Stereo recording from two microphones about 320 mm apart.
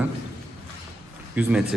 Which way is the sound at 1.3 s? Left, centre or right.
Centre.